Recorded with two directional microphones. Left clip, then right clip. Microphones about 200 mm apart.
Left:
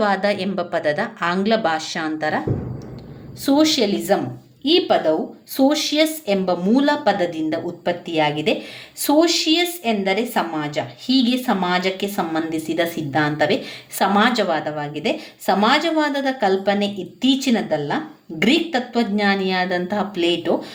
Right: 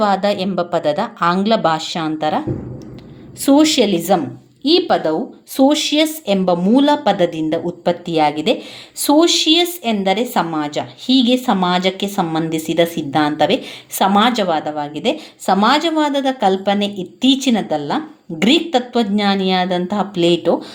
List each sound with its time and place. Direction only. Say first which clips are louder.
0.0 s speech: right 3 dB; 20° right (ahead or behind)
3.4 s a woman's voice: right 4 dB; 35° right (ahead or behind)